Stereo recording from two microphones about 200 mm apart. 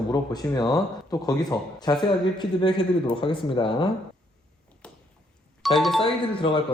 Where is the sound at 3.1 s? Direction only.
25° left (ahead or behind).